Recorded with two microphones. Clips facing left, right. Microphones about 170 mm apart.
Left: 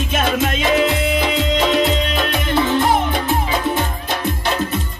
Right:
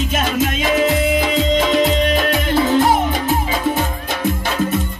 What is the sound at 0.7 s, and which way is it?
Music, 45° right (ahead or behind).